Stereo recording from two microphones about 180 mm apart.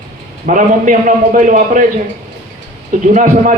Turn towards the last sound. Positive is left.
turn(degrees=-45)  # may be behind; listen again after turning